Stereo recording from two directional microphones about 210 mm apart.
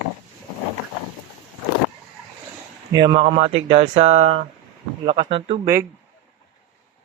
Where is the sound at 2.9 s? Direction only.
20° right (ahead or behind).